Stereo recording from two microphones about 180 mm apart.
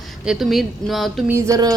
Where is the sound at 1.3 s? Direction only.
15° right (ahead or behind).